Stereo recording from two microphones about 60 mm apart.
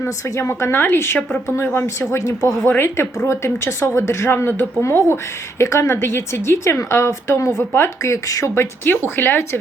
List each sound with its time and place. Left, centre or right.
0.0 s a woman's voice: left
2.7 s a woman's voice: left
8.5 s a woman's voice: left